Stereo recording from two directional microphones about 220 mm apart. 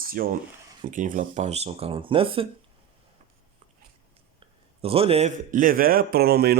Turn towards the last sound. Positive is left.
turn(degrees=-45)  # may be behind; listen again after turning